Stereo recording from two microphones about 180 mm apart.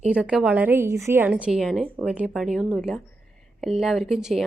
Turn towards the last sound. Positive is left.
turn(degrees=0)  # may be behind; listen again after turning